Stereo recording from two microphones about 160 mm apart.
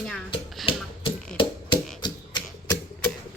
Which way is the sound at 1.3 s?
30° left (ahead or behind).